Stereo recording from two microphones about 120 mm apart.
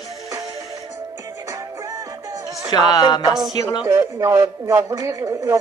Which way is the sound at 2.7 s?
35° left (ahead or behind).